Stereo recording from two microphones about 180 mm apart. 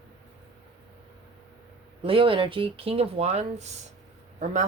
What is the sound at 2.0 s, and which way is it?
Speech, 30° right (ahead or behind).